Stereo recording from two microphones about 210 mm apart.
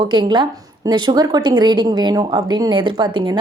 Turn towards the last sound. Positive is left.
turn(degrees=-20)  # may be behind; listen again after turning